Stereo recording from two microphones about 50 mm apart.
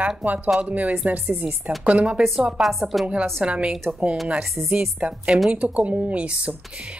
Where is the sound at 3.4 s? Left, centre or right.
Right.